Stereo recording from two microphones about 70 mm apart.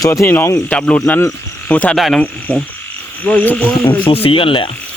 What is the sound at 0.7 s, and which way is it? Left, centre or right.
Insect, left.